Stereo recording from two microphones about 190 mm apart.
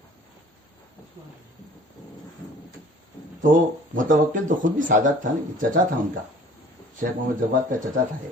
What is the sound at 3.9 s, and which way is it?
Speech, 45° right (ahead or behind).